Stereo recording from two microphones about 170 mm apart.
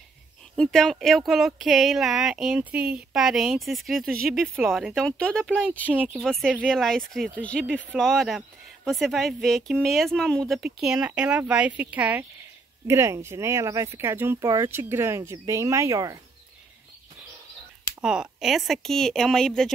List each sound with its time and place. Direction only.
0.6 s speech: 5° left (ahead or behind); by 16.2 s 20° right (ahead or behind)
18.0 s speech: 5° right (ahead or behind)